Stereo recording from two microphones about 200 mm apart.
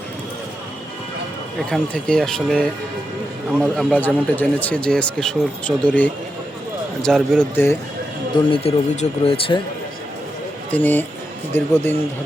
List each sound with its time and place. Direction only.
1.5 s speech: 5° left (ahead or behind)
8.4 s speech: 30° left (ahead or behind)
10.7 s speech: 10° left (ahead or behind)